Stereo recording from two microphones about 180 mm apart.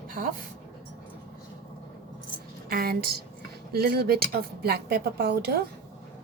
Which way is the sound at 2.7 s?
55° right (ahead or behind).